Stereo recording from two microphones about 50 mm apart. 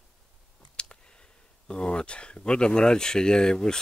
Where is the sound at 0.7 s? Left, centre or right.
Centre.